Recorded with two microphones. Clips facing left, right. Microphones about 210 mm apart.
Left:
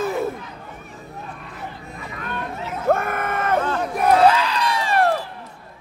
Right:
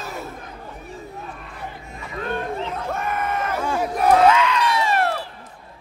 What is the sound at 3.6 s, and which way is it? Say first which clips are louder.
Battle cry: even; 10° right (ahead or behind).